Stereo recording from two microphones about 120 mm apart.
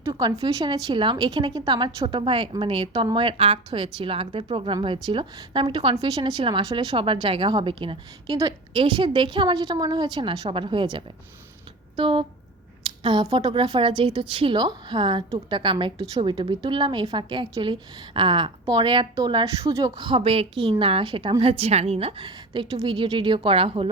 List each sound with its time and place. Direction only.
0.1 s a woman's voice: 40° right (ahead or behind)
12.8 s a sound: 45° right (ahead or behind)
13.3 s a woman's voice: 45° right (ahead or behind)